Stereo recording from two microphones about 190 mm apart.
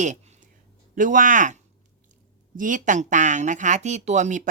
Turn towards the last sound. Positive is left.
turn(degrees=-40)  # may be behind; listen again after turning